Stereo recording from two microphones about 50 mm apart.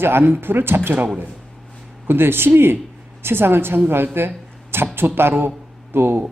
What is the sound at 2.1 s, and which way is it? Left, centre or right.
Speech, right.